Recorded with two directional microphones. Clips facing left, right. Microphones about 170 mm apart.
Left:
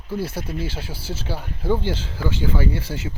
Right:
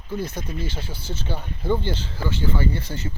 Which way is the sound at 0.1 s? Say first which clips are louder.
Left 2 dB; 5° left (ahead or behind).